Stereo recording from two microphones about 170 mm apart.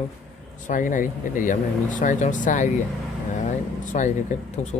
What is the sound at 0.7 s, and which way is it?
Speech, 50° left (ahead or behind).